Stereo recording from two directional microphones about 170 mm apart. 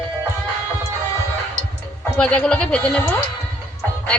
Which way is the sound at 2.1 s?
5° left (ahead or behind).